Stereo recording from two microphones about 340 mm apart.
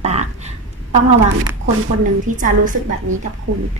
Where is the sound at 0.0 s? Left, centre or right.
Centre.